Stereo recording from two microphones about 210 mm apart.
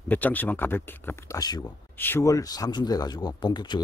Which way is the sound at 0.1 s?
10° left (ahead or behind).